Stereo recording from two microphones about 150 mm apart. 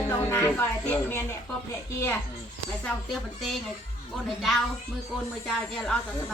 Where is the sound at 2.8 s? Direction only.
5° left (ahead or behind).